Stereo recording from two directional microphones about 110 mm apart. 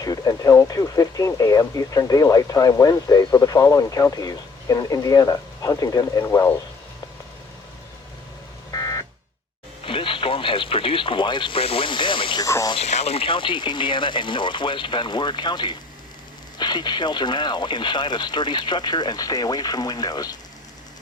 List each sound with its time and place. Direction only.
0.0 s speech: 35° left (ahead or behind)
8.7 s buzzer: 30° left (ahead or behind)
9.8 s speech: 50° left (ahead or behind)
12.4 s speech: 30° left (ahead or behind)
12.7 s speech: 75° left (ahead or behind); by 20.3 s 35° left (ahead or behind)